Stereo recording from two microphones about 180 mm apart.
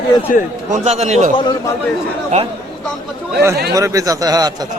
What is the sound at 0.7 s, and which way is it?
Speech, 40° right (ahead or behind).